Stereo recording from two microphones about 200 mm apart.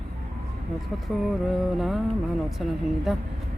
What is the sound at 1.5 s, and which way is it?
Speech, centre (ahead or behind).